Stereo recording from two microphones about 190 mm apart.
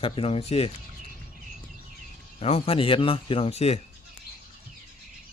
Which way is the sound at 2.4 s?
30° left (ahead or behind).